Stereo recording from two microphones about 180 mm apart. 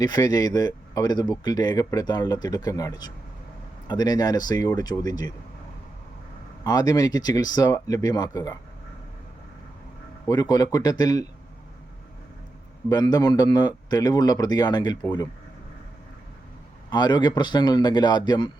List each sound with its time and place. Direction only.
0.0 s speech: 20° left (ahead or behind)
6.7 s speech: 20° left (ahead or behind)
10.2 s speech: 20° left (ahead or behind)
12.9 s speech: 20° left (ahead or behind)
16.9 s speech: 25° left (ahead or behind)